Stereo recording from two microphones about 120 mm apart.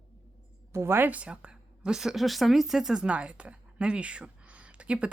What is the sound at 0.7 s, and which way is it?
A woman's voice, 20° right (ahead or behind).